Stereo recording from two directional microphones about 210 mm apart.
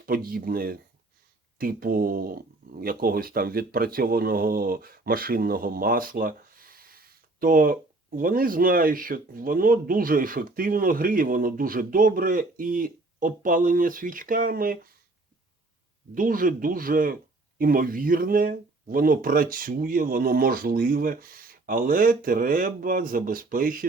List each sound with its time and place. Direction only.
0.0 s speech: 45° right (ahead or behind)
16.1 s speech: 40° right (ahead or behind)